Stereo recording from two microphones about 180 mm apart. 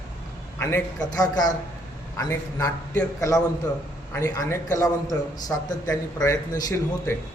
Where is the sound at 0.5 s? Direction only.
10° left (ahead or behind).